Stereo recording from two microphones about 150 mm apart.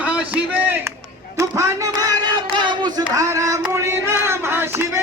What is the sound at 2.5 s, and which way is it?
Child singing, 30° right (ahead or behind).